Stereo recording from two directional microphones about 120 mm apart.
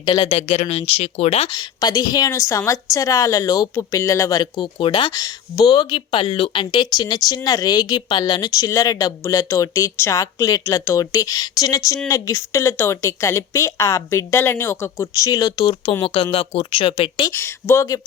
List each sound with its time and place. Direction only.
0.1 s speech: 55° left (ahead or behind)
1.5 s speech: 35° left (ahead or behind)
4.5 s speech: 45° left (ahead or behind)
16.0 s speech: 50° left (ahead or behind)
17.3 s speech: 20° left (ahead or behind)